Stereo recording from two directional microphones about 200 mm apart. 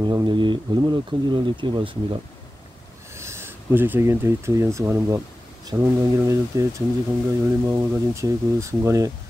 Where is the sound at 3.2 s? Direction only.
15° right (ahead or behind).